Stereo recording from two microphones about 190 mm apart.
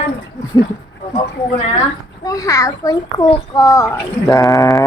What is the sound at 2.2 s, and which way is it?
A child's voice, 20° left (ahead or behind).